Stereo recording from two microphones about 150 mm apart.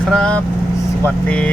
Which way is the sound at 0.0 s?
5° left (ahead or behind).